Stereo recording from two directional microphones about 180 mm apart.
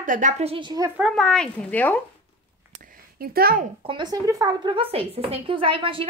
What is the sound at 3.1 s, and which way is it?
Speech, 55° right (ahead or behind).